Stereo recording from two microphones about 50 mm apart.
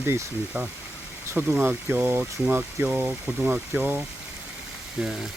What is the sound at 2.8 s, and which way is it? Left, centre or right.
Speech, right.